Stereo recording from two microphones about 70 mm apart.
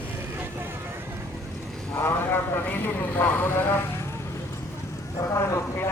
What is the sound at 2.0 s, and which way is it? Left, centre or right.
Vehicle, left.